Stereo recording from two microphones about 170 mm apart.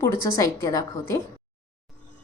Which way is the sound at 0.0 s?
20° left (ahead or behind).